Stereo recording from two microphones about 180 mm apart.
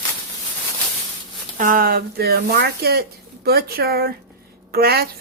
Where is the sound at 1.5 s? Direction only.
50° right (ahead or behind).